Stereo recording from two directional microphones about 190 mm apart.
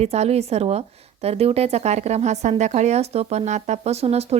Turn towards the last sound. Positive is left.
turn(degrees=-35)  # may be behind; listen again after turning